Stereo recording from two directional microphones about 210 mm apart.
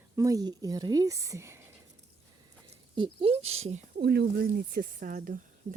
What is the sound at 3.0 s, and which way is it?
Speech, 25° right (ahead or behind).